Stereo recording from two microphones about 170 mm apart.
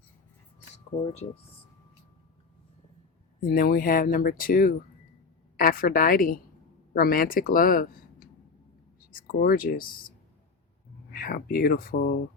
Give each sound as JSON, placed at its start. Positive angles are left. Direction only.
{"t": 1.0, "sound": "speech", "side_deg": 40}
{"t": 3.4, "sound": "speech", "side_deg": 60}
{"t": 11.1, "sound": "speech", "side_deg": 60}